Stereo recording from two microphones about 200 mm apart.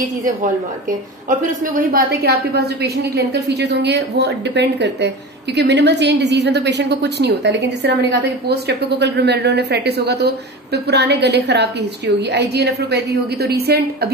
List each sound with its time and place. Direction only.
1.9 s a woman's voice: 50° right (ahead or behind)